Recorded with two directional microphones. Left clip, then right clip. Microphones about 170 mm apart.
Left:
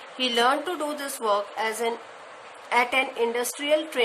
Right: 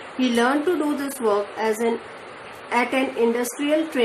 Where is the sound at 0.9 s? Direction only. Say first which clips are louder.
Right 3 dB; 40° left (ahead or behind).